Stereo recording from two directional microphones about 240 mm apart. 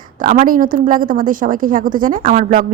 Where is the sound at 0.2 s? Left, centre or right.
Right.